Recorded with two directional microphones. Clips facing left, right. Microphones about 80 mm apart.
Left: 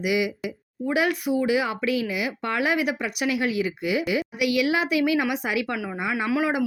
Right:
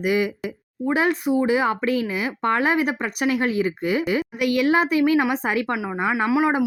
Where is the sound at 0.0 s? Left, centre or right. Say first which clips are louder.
Right 3 dB; right.